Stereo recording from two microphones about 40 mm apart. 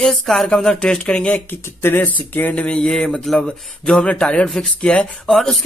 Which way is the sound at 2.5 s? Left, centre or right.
Left.